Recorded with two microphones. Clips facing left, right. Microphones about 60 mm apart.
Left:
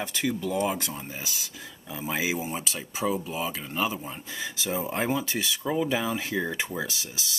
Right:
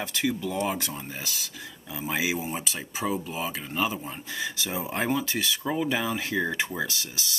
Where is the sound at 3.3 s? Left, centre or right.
Centre.